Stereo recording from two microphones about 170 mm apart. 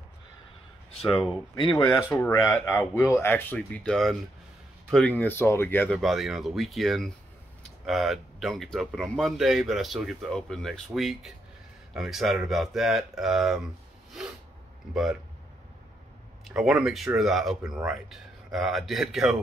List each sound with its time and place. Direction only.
1.0 s speech: 30° left (ahead or behind)
1.9 s speech: 15° left (ahead or behind)
5.9 s speech: centre (ahead or behind)
16.4 s speech: centre (ahead or behind)